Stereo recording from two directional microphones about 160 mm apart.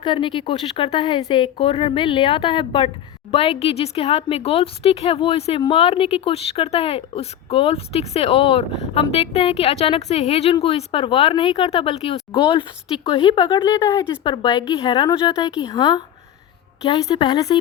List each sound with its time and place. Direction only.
0.0 s a woman's voice: 30° left (ahead or behind)
14.4 s speech: 30° left (ahead or behind)